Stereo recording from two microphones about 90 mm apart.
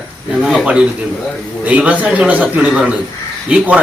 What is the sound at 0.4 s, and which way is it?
A man's voice, 10° right (ahead or behind).